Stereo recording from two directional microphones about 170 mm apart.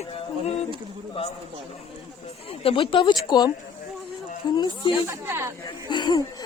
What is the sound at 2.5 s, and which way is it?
Speech, 35° left (ahead or behind).